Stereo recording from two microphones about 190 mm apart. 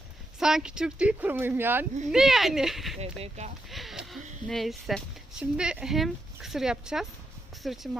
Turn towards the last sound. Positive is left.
turn(degrees=0)  # may be behind; listen again after turning